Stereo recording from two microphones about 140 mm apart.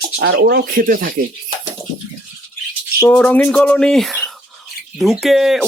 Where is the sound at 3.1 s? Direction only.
10° left (ahead or behind).